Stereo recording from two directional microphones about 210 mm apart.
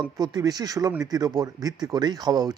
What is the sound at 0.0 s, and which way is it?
Speech, 20° right (ahead or behind).